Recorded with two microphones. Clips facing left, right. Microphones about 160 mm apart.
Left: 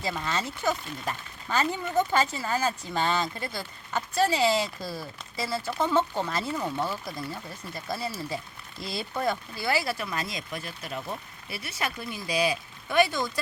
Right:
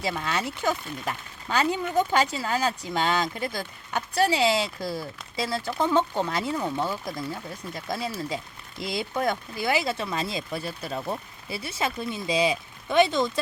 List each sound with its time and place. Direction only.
0.3 s speech: 15° right (ahead or behind)